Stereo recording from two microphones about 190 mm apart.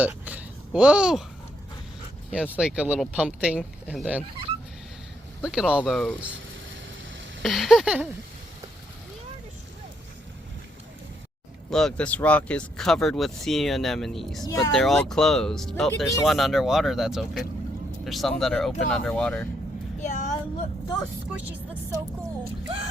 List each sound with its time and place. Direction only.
0.0 s a sound: 10° right (ahead or behind)
2.3 s speech: 5° right (ahead or behind)
5.4 s speech: 5° right (ahead or behind)
7.4 s a sound: centre (ahead or behind)
11.7 s speech: centre (ahead or behind)
20.0 s child singing: 40° left (ahead or behind)
21.3 s speech: 10° right (ahead or behind)